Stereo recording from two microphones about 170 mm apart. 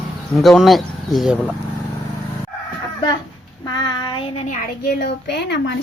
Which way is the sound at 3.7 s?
25° left (ahead or behind).